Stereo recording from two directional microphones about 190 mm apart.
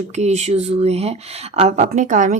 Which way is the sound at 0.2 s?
35° right (ahead or behind).